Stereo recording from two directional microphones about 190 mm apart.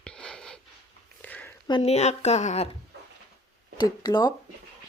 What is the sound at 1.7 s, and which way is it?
Speech, 35° left (ahead or behind).